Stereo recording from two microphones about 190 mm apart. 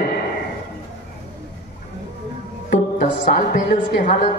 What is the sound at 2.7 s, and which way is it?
Music, 40° left (ahead or behind).